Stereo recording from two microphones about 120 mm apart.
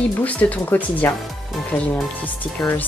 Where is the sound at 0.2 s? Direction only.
15° left (ahead or behind).